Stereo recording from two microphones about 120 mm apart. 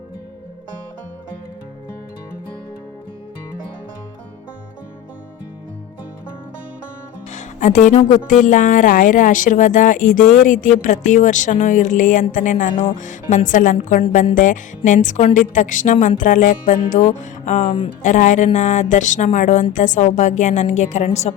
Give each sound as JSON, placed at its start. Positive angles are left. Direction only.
{"t": 7.3, "sound": "speech", "side_deg": 85}
{"t": 17.6, "sound": "speech", "side_deg": 50}
{"t": 18.0, "sound": "a woman's voice", "side_deg": 90}